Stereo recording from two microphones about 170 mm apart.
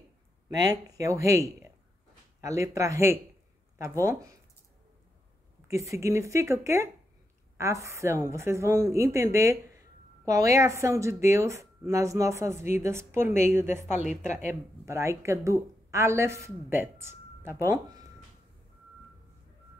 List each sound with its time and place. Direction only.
0.7 s a woman's voice: 20° right (ahead or behind)
5.7 s a woman's voice: 15° right (ahead or behind)
14.2 s speech: 45° left (ahead or behind)
14.5 s a woman's voice: 15° right (ahead or behind)